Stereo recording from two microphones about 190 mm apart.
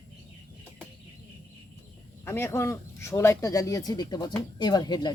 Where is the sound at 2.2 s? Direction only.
15° left (ahead or behind).